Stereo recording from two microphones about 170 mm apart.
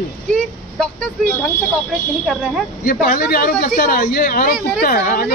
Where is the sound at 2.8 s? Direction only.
50° left (ahead or behind).